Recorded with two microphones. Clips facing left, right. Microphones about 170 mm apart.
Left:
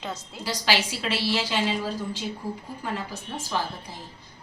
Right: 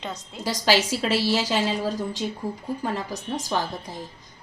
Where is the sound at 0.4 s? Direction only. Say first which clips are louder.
Right 4 dB; 40° right (ahead or behind).